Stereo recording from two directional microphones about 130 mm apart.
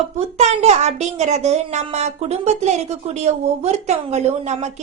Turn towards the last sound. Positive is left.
turn(degrees=-60)  # may be behind; listen again after turning